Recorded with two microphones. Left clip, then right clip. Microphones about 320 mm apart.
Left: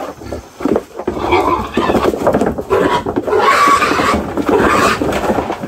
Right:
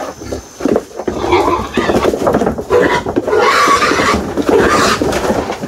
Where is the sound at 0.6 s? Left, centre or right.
Centre.